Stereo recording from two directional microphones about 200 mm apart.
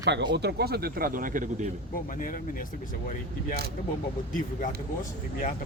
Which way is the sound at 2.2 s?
45° left (ahead or behind).